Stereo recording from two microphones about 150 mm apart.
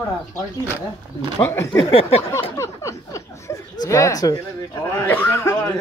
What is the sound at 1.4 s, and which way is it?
Speech, 15° left (ahead or behind).